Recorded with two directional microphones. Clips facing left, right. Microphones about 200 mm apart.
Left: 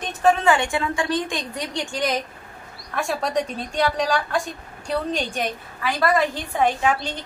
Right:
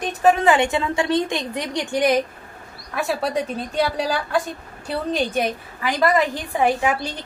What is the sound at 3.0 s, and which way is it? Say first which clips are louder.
A woman's voice: right 1 dB; 5° right (ahead or behind).